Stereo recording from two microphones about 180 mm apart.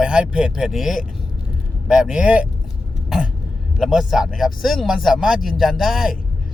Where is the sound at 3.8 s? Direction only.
Centre (ahead or behind).